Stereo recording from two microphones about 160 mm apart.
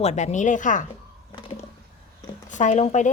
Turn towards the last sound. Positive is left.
turn(degrees=45)  # may be behind; listen again after turning